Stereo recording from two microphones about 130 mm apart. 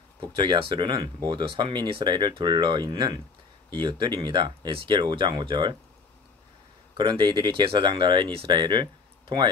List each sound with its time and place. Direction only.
0.4 s speech: 40° right (ahead or behind)
7.0 s speech: 35° right (ahead or behind)